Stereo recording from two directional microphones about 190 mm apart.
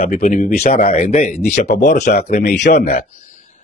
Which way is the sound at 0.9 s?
30° left (ahead or behind).